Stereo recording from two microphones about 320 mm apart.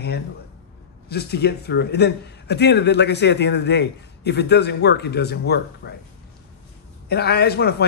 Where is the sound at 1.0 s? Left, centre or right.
Left.